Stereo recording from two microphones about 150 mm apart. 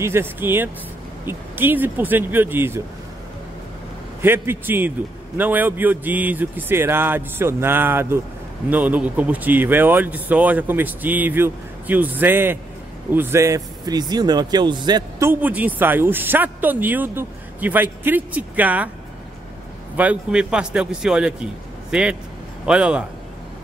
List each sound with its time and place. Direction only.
0.0 s speech: 15° right (ahead or behind)
4.2 s speech: 15° right (ahead or behind)
15.2 s speech: 10° right (ahead or behind)
20.0 s speech: 10° right (ahead or behind)